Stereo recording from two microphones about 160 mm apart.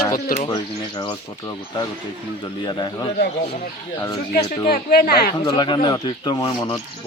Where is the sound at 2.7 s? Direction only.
30° left (ahead or behind).